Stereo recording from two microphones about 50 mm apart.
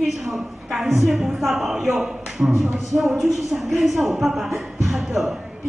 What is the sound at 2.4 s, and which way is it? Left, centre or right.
Speech, right.